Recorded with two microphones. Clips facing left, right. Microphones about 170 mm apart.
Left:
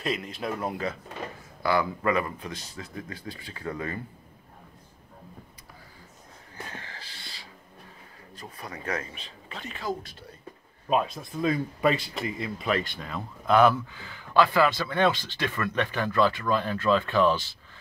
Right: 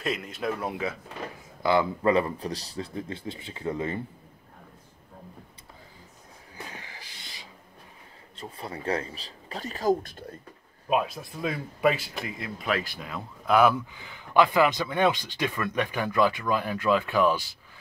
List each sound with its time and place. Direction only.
0.0 s speech: centre (ahead or behind)
1.6 s speech: 20° right (ahead or behind)
6.5 s a sound: 15° right (ahead or behind)
8.4 s speech: 25° right (ahead or behind); by 10.2 s 50° right (ahead or behind)
10.9 s speech: 5° right (ahead or behind)
13.9 s speech: 20° right (ahead or behind)